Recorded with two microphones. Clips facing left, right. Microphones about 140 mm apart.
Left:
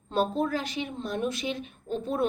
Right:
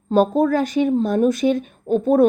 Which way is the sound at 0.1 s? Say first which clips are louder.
Right 10 dB; 45° right (ahead or behind).